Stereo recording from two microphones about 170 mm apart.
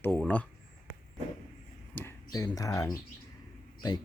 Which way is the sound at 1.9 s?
10° left (ahead or behind).